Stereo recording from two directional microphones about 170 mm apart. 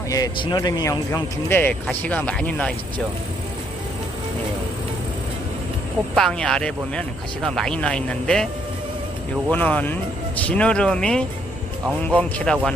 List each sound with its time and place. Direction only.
0.1 s speech: 20° left (ahead or behind)
6.1 s speech: 5° left (ahead or behind)
9.5 s speech: 10° left (ahead or behind)